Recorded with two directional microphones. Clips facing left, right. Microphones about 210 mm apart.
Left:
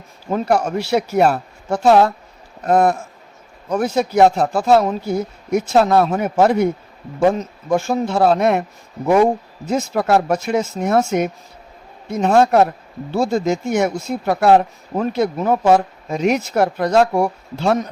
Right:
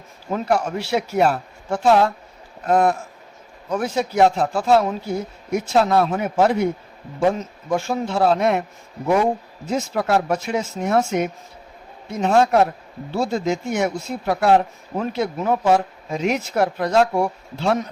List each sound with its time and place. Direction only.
0.3 s a man's voice: 40° left (ahead or behind)
7.7 s speech: 45° left (ahead or behind)